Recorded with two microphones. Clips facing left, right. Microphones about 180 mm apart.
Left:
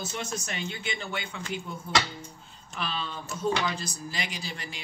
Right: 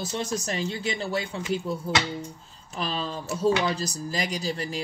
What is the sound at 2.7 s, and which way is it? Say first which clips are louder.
Speech: right 4 dB; 35° right (ahead or behind).